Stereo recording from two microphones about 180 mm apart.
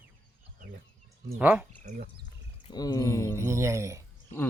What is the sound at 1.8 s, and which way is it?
Speech, 45° right (ahead or behind).